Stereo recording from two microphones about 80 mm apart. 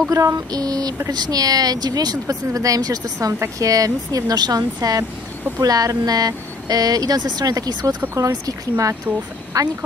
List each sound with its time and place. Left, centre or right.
0.1 s speech: right